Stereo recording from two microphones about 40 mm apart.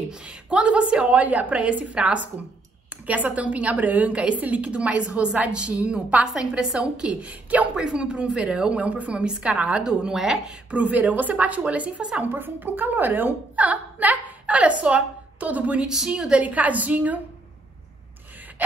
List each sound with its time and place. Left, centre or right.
0.1 s speech: right
1.1 s a woman's voice: right
7.7 s speech: right
9.8 s speech: centre
10.7 s a woman's voice: right
12.3 s a woman's voice: right
14.4 s a woman's voice: right
16.1 s speech: right
16.3 s a woman's voice: right